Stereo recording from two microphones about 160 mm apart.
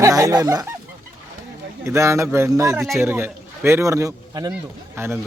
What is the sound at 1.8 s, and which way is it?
A man's voice, 20° right (ahead or behind).